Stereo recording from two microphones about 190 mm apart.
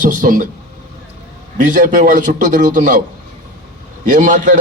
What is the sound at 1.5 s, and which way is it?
A man's voice, 45° right (ahead or behind).